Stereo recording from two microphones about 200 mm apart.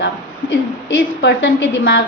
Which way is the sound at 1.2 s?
65° left (ahead or behind).